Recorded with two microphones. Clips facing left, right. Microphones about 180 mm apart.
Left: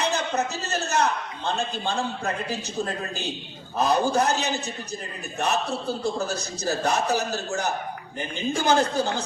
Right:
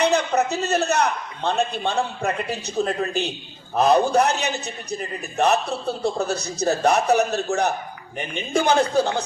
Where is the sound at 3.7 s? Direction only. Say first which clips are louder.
Right 5 dB; 70° right (ahead or behind).